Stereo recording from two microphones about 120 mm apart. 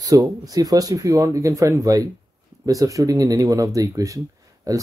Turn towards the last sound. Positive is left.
turn(degrees=-30)  # may be behind; listen again after turning